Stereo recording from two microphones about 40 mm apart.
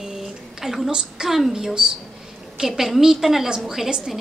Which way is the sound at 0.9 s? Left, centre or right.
Centre.